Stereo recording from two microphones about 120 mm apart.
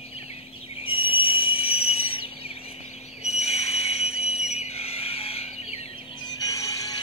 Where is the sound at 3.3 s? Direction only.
60° left (ahead or behind).